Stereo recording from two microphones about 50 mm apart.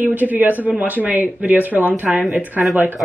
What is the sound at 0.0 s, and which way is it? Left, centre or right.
A woman's voice, right.